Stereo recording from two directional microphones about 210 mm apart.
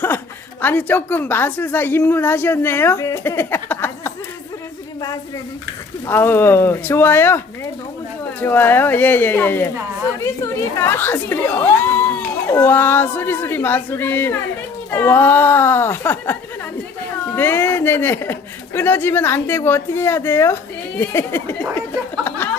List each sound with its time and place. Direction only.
0.6 s speech: 10° left (ahead or behind)
4.9 s a sound: 15° left (ahead or behind)
6.1 s speech: 10° left (ahead or behind)